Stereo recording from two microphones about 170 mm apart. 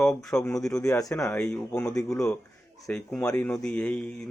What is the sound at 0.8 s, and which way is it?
Speech, 20° left (ahead or behind).